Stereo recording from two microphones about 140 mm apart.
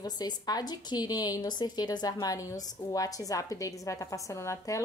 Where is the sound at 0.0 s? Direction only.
30° left (ahead or behind).